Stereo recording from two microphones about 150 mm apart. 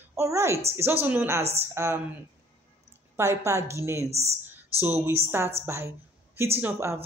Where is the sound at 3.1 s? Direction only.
20° right (ahead or behind).